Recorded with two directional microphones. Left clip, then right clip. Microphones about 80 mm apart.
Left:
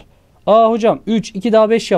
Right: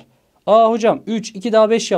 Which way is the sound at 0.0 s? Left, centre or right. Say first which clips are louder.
Left 4 dB; left.